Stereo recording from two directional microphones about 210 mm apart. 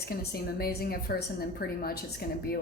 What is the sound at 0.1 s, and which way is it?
A woman's voice, 45° left (ahead or behind).